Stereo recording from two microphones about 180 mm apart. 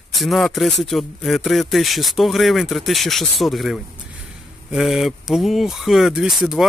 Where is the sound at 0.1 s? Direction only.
Centre (ahead or behind).